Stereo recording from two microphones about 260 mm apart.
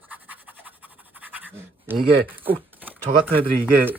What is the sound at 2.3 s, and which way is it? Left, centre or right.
Speech, centre.